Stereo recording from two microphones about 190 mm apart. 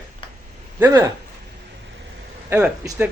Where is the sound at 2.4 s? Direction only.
10° right (ahead or behind).